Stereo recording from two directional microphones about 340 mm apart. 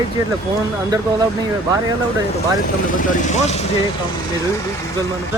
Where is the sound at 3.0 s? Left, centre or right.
Left.